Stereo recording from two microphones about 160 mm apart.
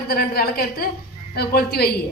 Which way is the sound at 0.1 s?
75° left (ahead or behind).